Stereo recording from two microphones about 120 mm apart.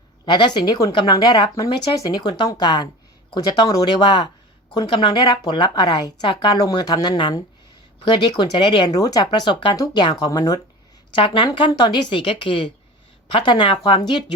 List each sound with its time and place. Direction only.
0.3 s speech: 40° left (ahead or behind)
8.9 s speech: 30° left (ahead or behind)
9.7 s speech: 30° left (ahead or behind)
10.0 s speech: 40° left (ahead or behind)
11.1 s speech: 45° left (ahead or behind)
11.7 s speech: 35° left (ahead or behind)